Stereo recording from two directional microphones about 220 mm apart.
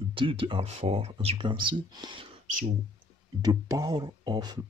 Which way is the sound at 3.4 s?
15° right (ahead or behind).